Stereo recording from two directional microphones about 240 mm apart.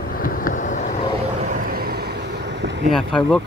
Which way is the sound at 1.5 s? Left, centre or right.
Right.